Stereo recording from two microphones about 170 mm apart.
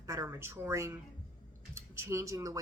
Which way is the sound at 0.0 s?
15° right (ahead or behind).